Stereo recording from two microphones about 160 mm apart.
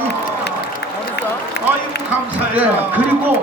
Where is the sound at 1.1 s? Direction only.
90° left.